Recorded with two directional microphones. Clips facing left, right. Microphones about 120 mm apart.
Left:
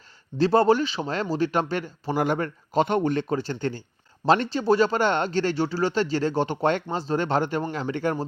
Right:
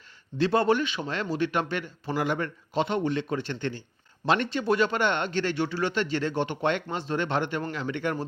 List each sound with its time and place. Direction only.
0.3 s a man's voice: 35° left (ahead or behind)